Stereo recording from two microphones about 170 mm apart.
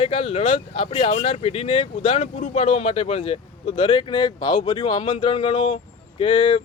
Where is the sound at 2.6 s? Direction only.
30° left (ahead or behind).